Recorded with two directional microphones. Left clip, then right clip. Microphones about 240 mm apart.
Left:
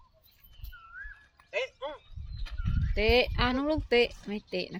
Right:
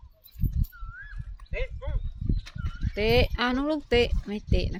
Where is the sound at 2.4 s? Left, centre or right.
Centre.